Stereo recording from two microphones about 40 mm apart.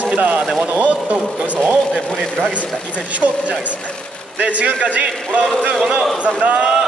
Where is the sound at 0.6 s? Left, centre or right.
Right.